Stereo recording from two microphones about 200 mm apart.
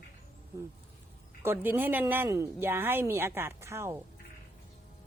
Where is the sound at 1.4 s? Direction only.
10° right (ahead or behind).